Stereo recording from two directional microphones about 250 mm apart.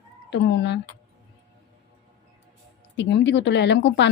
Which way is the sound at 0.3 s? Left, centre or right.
Left.